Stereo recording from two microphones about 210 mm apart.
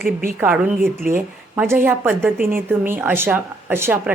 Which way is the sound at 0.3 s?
10° right (ahead or behind).